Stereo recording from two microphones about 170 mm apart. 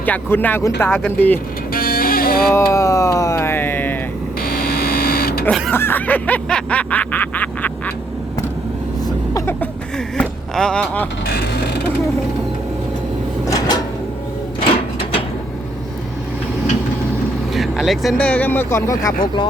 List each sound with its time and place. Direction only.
0.0 s speech: 10° left (ahead or behind)
1.7 s music: 60° left (ahead or behind)
2.5 s music: 15° left (ahead or behind)
4.4 s printer: 60° left (ahead or behind)
5.5 s speech: centre (ahead or behind)
9.0 s vehicle: 20° left (ahead or behind)
10.2 s speech: 5° left (ahead or behind)
11.3 s a sound: 65° left (ahead or behind)
13.6 s a sound: 20° left (ahead or behind)
17.5 s speech: centre (ahead or behind); by 19.5 s 25° left (ahead or behind)